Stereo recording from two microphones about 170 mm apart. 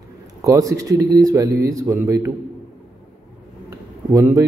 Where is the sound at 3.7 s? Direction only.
20° right (ahead or behind).